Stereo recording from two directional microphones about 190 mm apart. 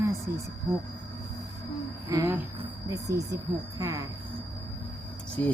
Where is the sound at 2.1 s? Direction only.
15° right (ahead or behind).